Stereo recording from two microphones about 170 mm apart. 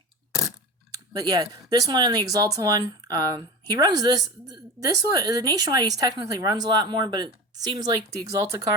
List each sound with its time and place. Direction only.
1.1 s a woman's voice: 25° right (ahead or behind)